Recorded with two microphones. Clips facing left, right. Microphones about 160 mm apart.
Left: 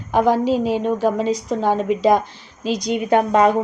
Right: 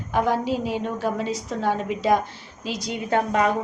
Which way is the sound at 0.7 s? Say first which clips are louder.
Left 7 dB; 20° left (ahead or behind).